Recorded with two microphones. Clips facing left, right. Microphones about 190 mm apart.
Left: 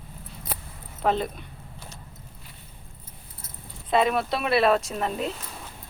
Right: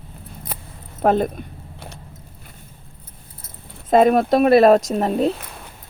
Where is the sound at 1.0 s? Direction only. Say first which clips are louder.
Right 7 dB; 50° right (ahead or behind).